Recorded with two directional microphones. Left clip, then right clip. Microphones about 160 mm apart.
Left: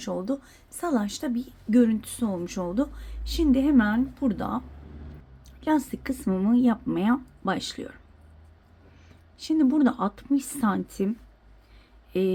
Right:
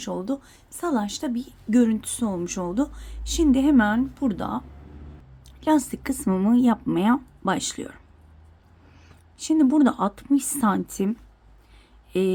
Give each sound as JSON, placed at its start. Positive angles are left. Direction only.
{"t": 0.0, "sound": "a woman's voice", "side_deg": -10}
{"t": 9.4, "sound": "a woman's voice", "side_deg": -25}
{"t": 12.1, "sound": "a woman's voice", "side_deg": -25}